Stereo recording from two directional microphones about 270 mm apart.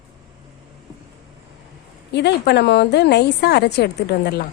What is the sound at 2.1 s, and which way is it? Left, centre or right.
A woman's voice, left.